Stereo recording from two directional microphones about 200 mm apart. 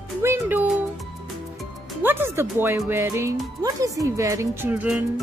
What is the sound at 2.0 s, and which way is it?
Speech, 10° right (ahead or behind).